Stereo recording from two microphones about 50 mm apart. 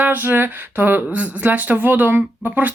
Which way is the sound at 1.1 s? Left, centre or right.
Right.